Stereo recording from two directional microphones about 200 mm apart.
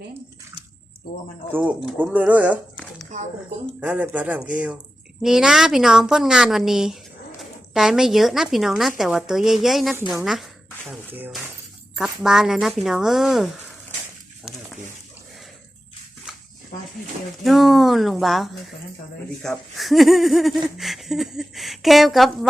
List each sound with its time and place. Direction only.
1.5 s speech: 5° right (ahead or behind)
3.8 s speech: 5° right (ahead or behind)
16.7 s a sound: 45° left (ahead or behind)
17.4 s speech: centre (ahead or behind)